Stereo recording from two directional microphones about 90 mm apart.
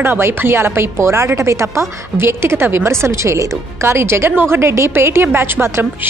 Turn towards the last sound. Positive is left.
turn(degrees=-25)  # may be behind; listen again after turning